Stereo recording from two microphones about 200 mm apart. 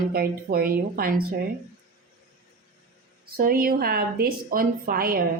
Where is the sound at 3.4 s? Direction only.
45° right (ahead or behind).